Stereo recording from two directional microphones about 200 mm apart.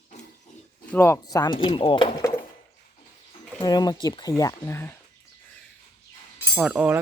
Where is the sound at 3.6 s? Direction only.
20° left (ahead or behind).